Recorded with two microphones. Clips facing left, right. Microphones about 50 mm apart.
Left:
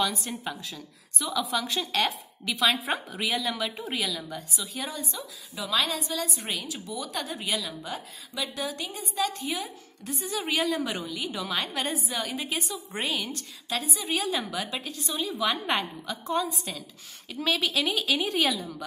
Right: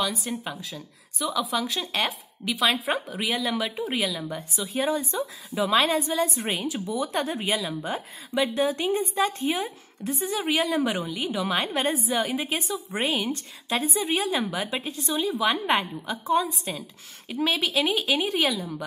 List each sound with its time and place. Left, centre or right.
0.0 s speech: centre
4.7 s a woman's voice: right
10.4 s a woman's voice: centre
15.5 s speech: centre
16.7 s a woman's voice: centre
18.6 s speech: centre